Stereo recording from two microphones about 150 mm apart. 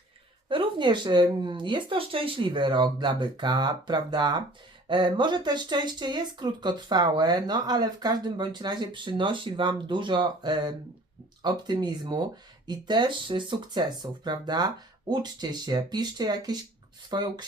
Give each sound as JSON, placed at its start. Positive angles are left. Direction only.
{"t": 0.4, "sound": "speech", "side_deg": -35}